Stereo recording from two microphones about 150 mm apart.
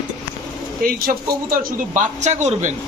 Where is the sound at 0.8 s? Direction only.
70° right (ahead or behind).